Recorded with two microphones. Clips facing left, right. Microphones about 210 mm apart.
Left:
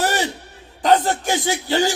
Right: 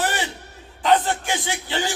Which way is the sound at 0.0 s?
40° left (ahead or behind).